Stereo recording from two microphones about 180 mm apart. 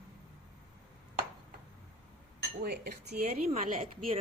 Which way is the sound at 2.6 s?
65° right (ahead or behind).